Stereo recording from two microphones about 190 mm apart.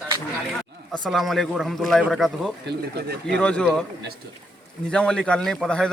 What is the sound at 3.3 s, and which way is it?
Speech, 5° left (ahead or behind).